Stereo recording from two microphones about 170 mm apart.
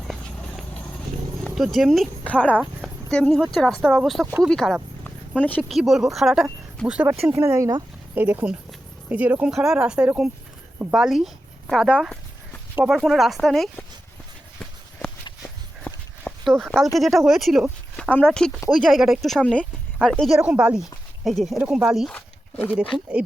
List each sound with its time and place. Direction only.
0.0 s clip-clop: centre (ahead or behind)
1.5 s speech: centre (ahead or behind)
2.6 s a sound: centre (ahead or behind)
3.5 s speech: centre (ahead or behind)
5.0 s a sound: 10° left (ahead or behind)
5.6 s speech: centre (ahead or behind); by 7.9 s 20° right (ahead or behind)
8.1 s speech: 10° right (ahead or behind)
15.8 s horse: 5° left (ahead or behind)
17.0 s speech: centre (ahead or behind)
22.7 s speech: 5° right (ahead or behind)